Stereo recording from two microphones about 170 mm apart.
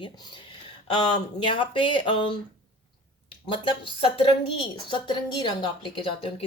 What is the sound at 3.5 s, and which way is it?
Speech, 30° left (ahead or behind).